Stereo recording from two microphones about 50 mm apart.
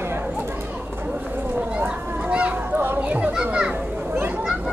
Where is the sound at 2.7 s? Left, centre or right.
Right.